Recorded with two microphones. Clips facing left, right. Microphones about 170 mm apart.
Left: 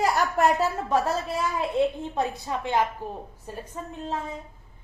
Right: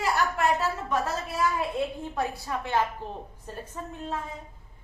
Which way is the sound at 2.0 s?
20° left (ahead or behind).